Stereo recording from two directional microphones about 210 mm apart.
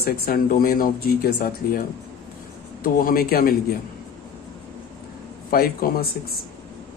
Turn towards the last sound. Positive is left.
turn(degrees=45)  # may be behind; listen again after turning